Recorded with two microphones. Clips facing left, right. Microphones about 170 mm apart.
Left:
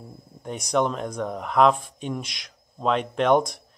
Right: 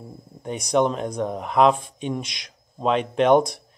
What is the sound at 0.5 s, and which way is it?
Speech, centre (ahead or behind).